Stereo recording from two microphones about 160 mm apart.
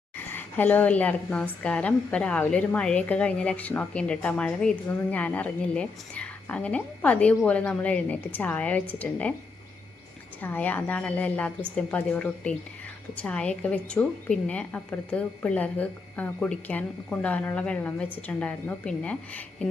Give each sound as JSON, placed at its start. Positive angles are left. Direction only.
{"t": 0.3, "sound": "a woman's voice", "side_deg": 10}
{"t": 10.4, "sound": "a woman's voice", "side_deg": 10}